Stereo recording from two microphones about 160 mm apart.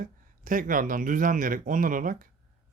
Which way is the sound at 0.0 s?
55° right (ahead or behind).